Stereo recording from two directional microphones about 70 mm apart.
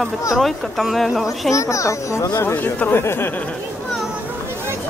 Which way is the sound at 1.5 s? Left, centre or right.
Left.